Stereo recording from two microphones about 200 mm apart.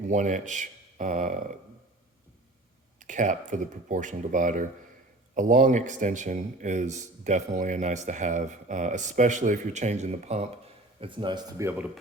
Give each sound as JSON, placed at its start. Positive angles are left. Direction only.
{"t": 0.1, "sound": "speech", "side_deg": -40}
{"t": 3.0, "sound": "speech", "side_deg": -40}